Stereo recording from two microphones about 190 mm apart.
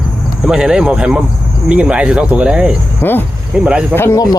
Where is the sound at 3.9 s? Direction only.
15° left (ahead or behind).